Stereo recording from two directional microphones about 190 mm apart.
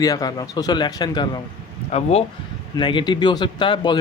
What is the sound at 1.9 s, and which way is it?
Speech, 35° left (ahead or behind).